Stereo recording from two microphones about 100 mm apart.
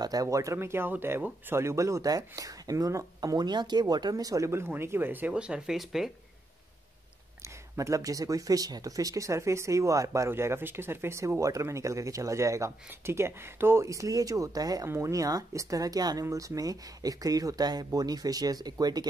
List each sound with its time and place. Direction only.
0.0 s speech: 40° right (ahead or behind); by 6.1 s 5° right (ahead or behind)
7.4 s speech: 30° right (ahead or behind)